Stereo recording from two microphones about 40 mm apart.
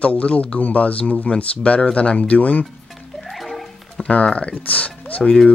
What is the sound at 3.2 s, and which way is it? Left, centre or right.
Music, centre.